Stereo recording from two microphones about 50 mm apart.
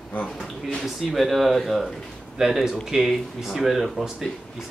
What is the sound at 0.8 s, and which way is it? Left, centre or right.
Speech, centre.